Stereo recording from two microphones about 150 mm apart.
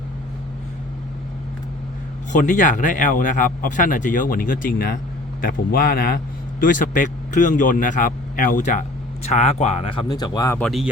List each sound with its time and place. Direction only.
2.3 s speech: 55° left (ahead or behind); by 6.1 s 90° left
6.6 s speech: 65° left (ahead or behind)
9.2 s speech: 50° left (ahead or behind)
10.1 s speech: 25° left (ahead or behind)
10.6 s speech: centre (ahead or behind)